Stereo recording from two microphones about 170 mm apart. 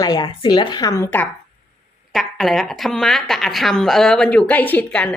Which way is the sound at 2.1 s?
Centre (ahead or behind).